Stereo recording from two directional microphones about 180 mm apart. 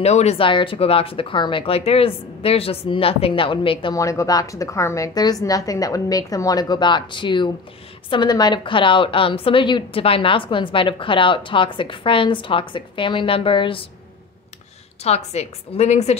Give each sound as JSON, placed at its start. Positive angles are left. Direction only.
{"t": 0.0, "sound": "speech", "side_deg": 35}
{"t": 3.9, "sound": "a woman's voice", "side_deg": 15}
{"t": 15.0, "sound": "speech", "side_deg": 35}